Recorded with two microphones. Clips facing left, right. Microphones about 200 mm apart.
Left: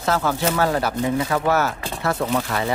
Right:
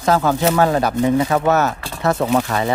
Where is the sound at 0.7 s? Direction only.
20° right (ahead or behind).